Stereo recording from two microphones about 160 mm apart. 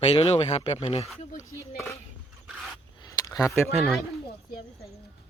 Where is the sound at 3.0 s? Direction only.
20° left (ahead or behind).